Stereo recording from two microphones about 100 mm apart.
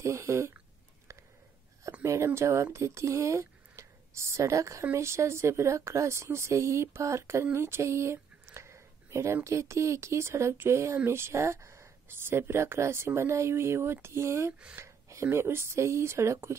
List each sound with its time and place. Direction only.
0.0 s speech: 30° right (ahead or behind)
2.0 s speech: 30° right (ahead or behind)